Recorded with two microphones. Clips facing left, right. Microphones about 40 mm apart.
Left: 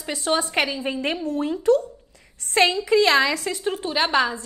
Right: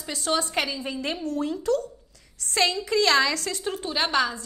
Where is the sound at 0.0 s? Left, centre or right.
Left.